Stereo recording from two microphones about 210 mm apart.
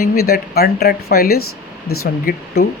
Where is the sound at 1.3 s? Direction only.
90° left.